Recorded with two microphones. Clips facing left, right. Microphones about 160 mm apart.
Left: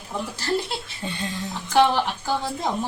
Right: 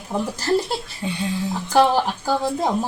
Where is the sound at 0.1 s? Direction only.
40° right (ahead or behind).